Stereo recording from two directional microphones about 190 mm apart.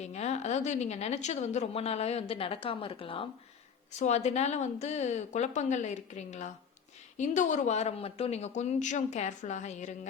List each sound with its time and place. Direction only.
0.0 s a woman's voice: 35° left (ahead or behind)